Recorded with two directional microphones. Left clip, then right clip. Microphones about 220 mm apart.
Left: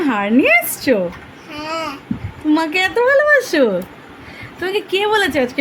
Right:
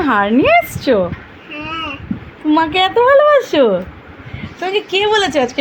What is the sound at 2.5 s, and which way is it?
Speech, 5° left (ahead or behind).